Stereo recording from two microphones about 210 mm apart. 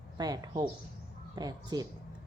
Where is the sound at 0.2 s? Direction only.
20° right (ahead or behind).